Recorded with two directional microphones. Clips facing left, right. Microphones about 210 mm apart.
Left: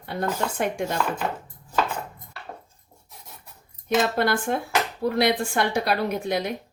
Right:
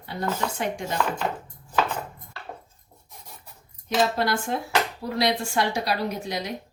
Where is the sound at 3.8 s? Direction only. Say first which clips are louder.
Left 2 dB; 55° left (ahead or behind).